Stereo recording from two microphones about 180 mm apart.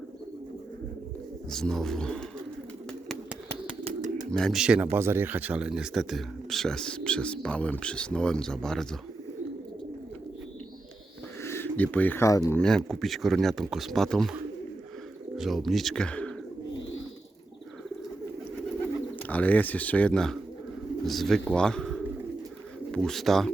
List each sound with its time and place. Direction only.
1.5 s speech: 5° left (ahead or behind)
3.1 s bird: 5° right (ahead or behind)
3.8 s bird: 45° right (ahead or behind)
4.3 s speech: 5° left (ahead or behind)
11.4 s speech: 10° left (ahead or behind)
12.5 s speech: 5° left (ahead or behind)
15.4 s speech: centre (ahead or behind)
19.2 s speech: 10° left (ahead or behind)